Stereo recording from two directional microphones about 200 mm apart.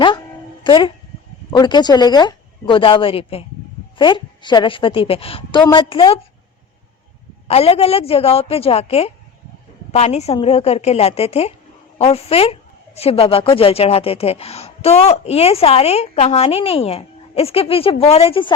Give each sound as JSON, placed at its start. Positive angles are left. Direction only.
{"t": 0.6, "sound": "a woman's voice", "side_deg": 25}
{"t": 7.4, "sound": "a woman's voice", "side_deg": 30}